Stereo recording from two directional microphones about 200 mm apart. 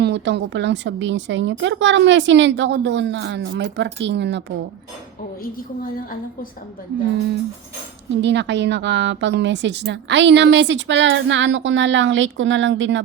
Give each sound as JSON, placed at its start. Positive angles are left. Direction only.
{"t": 0.0, "sound": "a woman's voice", "side_deg": -60}
{"t": 8.1, "sound": "a woman's voice", "side_deg": -60}